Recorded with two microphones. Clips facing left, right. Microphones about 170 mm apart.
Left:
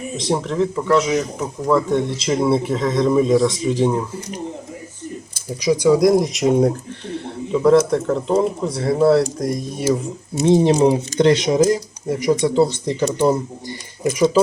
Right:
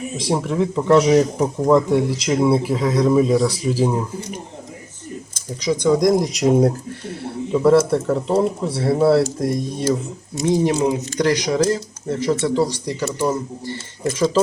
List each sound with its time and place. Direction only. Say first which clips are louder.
0.2 s speech: left 1 dB; 5° right (ahead or behind)
0.8 s speech: right 6 dB; 25° right (ahead or behind)
1.9 s speech: right 1 dB; 5° right (ahead or behind)
5.8 s speech: left 2 dB; 5° left (ahead or behind)
10.4 s speech: left 4 dB; 25° left (ahead or behind)
11.6 s speech: left 3 dB; 10° left (ahead or behind)
13.7 s a sound: left 3 dB; 15° left (ahead or behind)